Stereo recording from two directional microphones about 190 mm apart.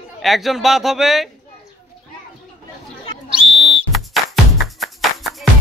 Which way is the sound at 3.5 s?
30° right (ahead or behind).